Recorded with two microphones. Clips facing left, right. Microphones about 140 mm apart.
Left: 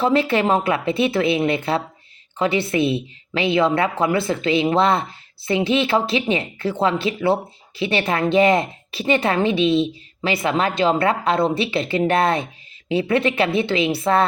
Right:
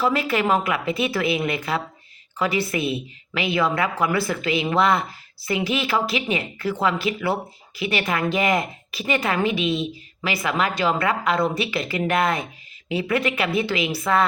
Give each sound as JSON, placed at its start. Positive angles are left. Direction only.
{"t": 0.0, "sound": "a woman's voice", "side_deg": 30}